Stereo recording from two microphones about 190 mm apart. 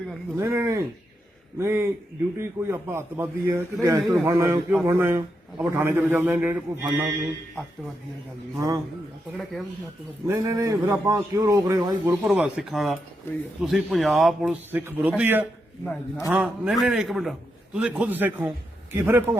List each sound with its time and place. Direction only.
0.3 s a man's voice: 15° right (ahead or behind)
8.5 s a man's voice: 15° right (ahead or behind)
10.2 s a man's voice: 15° right (ahead or behind)
12.3 s speech: centre (ahead or behind)
15.8 s a man's voice: 10° left (ahead or behind)
16.3 s a man's voice: 5° right (ahead or behind)